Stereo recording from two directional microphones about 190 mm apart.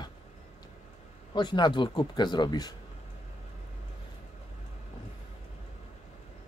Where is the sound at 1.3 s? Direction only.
25° left (ahead or behind).